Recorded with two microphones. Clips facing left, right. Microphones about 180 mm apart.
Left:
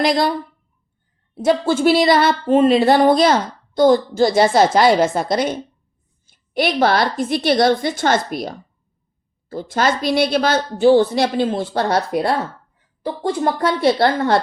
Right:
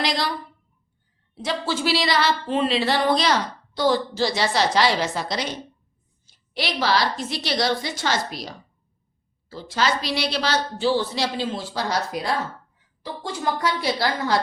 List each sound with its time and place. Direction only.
0.0 s speech: 50° left (ahead or behind)
1.4 s a woman's voice: 50° left (ahead or behind)